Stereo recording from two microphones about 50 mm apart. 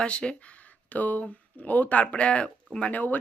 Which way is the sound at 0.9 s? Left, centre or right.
Left.